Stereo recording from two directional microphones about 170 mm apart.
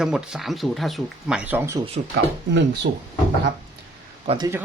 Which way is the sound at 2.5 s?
90° right.